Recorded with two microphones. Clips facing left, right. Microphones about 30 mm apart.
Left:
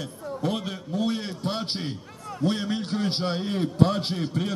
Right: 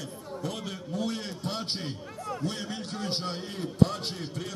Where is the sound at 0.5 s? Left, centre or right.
Centre.